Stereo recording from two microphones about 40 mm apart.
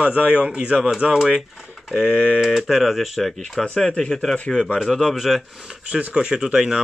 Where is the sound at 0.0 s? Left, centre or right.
Right.